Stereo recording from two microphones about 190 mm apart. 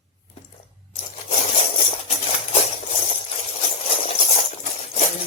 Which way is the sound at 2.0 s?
35° left (ahead or behind).